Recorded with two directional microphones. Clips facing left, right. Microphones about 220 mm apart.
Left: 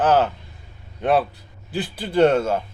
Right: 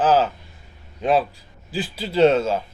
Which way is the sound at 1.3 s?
60° left (ahead or behind).